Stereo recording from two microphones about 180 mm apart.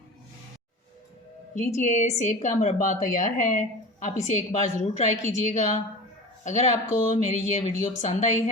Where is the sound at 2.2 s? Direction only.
40° left (ahead or behind).